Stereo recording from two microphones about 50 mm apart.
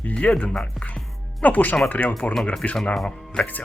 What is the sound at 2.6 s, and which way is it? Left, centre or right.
Speech, left.